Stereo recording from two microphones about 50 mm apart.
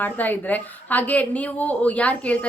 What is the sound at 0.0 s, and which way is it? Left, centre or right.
A woman's voice, left.